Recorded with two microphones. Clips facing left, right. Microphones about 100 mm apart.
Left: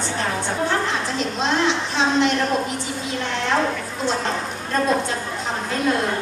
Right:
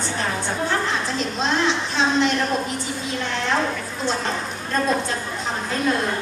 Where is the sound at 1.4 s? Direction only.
15° left (ahead or behind).